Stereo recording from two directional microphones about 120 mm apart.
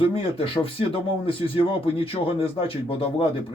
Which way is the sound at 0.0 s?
50° left (ahead or behind).